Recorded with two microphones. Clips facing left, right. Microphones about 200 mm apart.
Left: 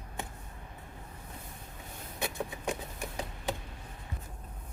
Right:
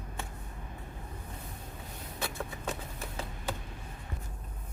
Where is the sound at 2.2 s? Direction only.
15° left (ahead or behind).